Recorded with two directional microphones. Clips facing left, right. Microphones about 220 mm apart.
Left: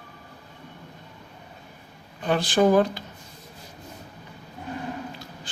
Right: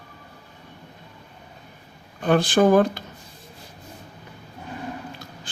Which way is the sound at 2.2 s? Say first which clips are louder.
Right 3 dB; 50° right (ahead or behind).